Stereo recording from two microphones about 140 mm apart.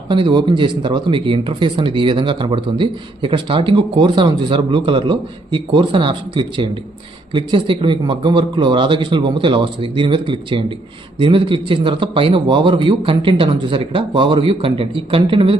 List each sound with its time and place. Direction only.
0.1 s speech: 35° right (ahead or behind)